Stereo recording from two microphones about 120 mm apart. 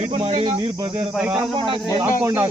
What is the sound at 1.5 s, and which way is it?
Speech, 45° right (ahead or behind).